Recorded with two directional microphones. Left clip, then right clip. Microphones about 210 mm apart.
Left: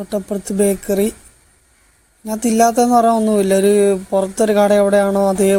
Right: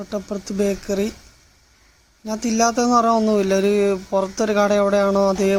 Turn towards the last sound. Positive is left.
turn(degrees=15)  # may be behind; listen again after turning